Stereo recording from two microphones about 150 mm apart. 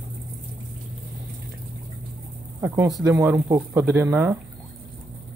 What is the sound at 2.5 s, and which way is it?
Speech, 15° right (ahead or behind).